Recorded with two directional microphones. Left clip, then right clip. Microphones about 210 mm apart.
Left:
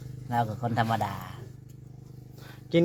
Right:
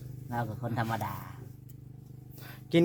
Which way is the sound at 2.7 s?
30° right (ahead or behind).